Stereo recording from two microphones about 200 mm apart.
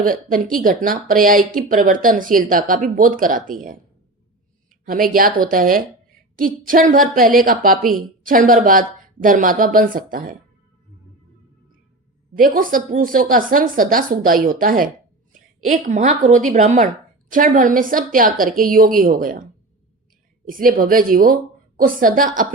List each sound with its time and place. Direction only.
0.0 s speech: 45° right (ahead or behind)
4.9 s speech: 45° right (ahead or behind)
12.4 s a woman's voice: 45° right (ahead or behind)
20.5 s speech: 45° right (ahead or behind)